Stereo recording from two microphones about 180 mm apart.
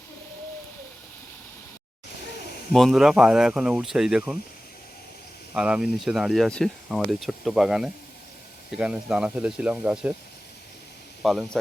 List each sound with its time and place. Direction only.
2.7 s speech: centre (ahead or behind)
5.5 s speech: 5° right (ahead or behind)
11.2 s speech: centre (ahead or behind)